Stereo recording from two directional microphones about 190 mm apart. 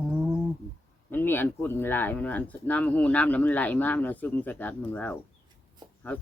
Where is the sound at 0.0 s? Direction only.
5° right (ahead or behind).